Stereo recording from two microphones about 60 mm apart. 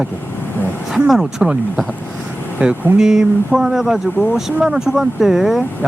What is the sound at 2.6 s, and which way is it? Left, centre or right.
Speech, centre.